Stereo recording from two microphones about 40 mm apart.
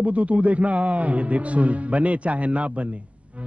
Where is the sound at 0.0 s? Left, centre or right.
Right.